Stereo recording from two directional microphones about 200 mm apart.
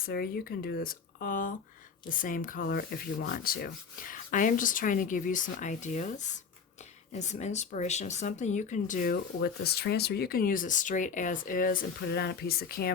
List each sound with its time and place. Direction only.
0.0 s speech: 50° left (ahead or behind)